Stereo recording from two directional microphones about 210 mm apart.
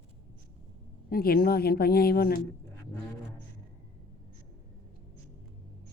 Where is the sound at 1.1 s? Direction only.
45° left (ahead or behind).